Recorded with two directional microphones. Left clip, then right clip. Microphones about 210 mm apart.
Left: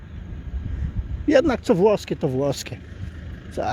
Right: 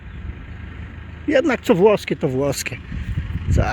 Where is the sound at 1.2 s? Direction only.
10° left (ahead or behind).